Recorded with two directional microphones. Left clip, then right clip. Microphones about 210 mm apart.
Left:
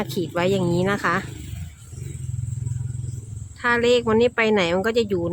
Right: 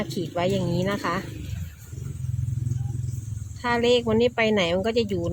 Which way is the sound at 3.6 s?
15° left (ahead or behind).